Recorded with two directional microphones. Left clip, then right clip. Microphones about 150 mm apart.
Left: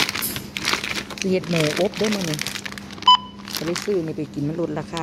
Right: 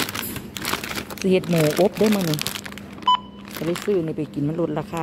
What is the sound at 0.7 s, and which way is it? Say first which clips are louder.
Crumpling: left 3 dB; 35° right (ahead or behind).